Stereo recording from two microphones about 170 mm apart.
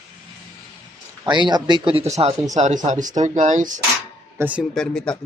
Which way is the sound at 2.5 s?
45° right (ahead or behind).